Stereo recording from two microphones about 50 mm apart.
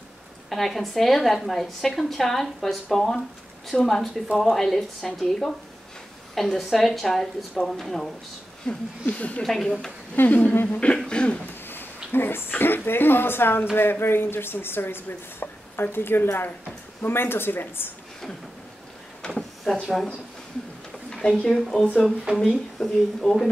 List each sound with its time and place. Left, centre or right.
0.5 s a woman's voice: centre
8.6 s a woman's voice: centre
9.0 s speech: left
9.4 s a woman's voice: centre
10.1 s speech: left
11.1 s speech: centre
11.6 s a sound: left
12.4 s speech: left
19.2 s a sound: centre
19.7 s a woman's voice: centre
21.1 s speech: centre
21.5 s a woman's voice: centre